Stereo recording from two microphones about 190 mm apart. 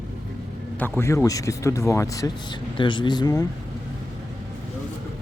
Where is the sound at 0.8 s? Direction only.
15° left (ahead or behind).